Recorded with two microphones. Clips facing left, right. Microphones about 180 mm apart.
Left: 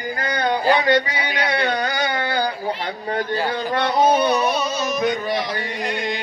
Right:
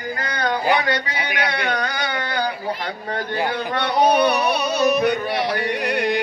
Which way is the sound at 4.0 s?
65° right (ahead or behind).